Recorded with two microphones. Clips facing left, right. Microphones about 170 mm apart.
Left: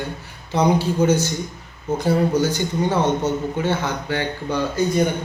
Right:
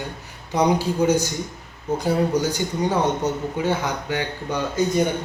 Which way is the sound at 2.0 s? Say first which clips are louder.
Left 2 dB; 15° right (ahead or behind).